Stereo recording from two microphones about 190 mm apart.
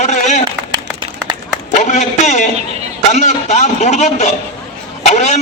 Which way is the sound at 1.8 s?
35° left (ahead or behind).